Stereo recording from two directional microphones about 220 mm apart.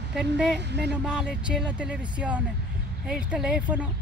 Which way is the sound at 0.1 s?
Centre (ahead or behind).